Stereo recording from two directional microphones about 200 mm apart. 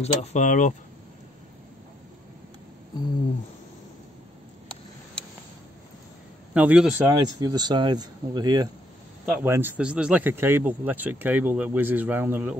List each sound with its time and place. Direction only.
0.0 s speech: 35° left (ahead or behind)
6.5 s speech: 5° right (ahead or behind)
7.3 s speech: 20° right (ahead or behind)